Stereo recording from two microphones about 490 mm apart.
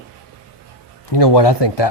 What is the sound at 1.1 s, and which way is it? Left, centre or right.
Speech, left.